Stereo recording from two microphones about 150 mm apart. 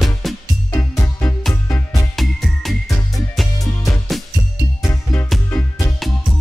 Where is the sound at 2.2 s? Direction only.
Centre (ahead or behind).